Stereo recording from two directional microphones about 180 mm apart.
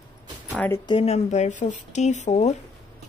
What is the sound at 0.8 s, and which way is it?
Speech, 35° left (ahead or behind).